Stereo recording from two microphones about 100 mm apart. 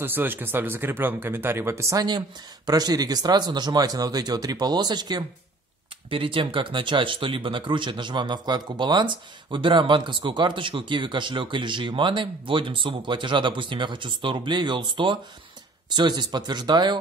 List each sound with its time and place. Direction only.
0.0 s speech: 20° right (ahead or behind)
2.0 s speech: 45° right (ahead or behind)
6.0 s speech: 60° right (ahead or behind)